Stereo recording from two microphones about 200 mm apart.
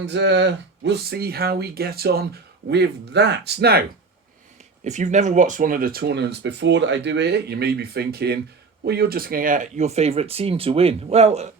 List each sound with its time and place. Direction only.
0.0 s speech: 60° right (ahead or behind)
4.8 s speech: 35° right (ahead or behind)